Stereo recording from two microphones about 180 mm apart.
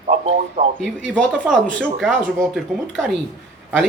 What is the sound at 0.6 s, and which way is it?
Speech, 40° right (ahead or behind).